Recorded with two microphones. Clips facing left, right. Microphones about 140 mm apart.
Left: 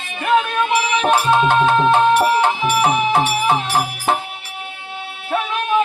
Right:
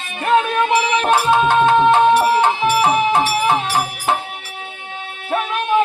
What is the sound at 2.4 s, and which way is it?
Music, 15° right (ahead or behind).